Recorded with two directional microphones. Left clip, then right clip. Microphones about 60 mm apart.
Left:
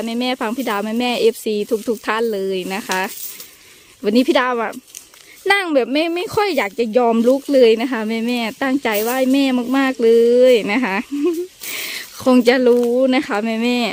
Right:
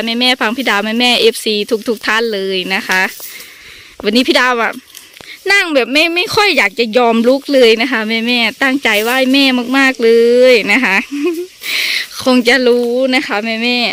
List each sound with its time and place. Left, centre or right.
0.0 s speech: centre
0.9 s speech: centre
4.0 s speech: centre
4.3 s speech: centre
5.5 s speech: left; by 7.3 s centre
7.5 s speech: centre
12.1 s speech: left